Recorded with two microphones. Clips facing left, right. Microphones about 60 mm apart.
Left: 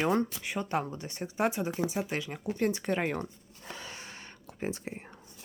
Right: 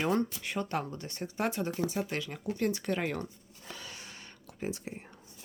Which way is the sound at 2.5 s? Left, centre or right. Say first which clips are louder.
Left 2 dB; left.